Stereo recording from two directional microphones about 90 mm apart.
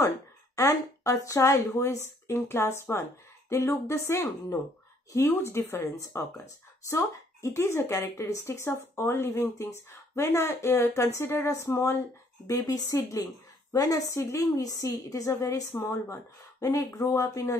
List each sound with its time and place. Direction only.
0.7 s a woman's voice: 35° left (ahead or behind)
7.4 s a woman's voice: 30° left (ahead or behind)
12.4 s a woman's voice: 40° left (ahead or behind)